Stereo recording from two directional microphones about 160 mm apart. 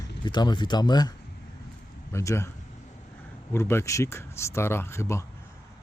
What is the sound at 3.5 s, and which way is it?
Speech, 15° left (ahead or behind).